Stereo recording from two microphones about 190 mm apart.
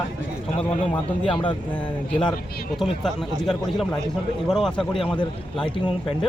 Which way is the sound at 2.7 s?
Centre (ahead or behind).